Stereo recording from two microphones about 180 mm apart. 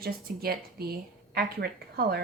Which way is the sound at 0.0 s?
55° right (ahead or behind).